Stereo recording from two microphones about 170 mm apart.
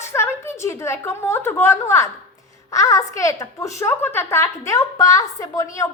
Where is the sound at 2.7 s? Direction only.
20° left (ahead or behind).